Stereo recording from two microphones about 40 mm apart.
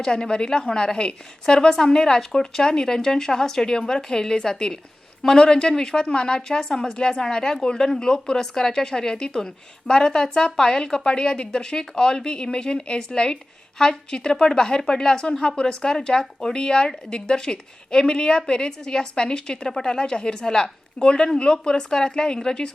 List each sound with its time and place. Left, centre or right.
0.0 s a woman's voice: centre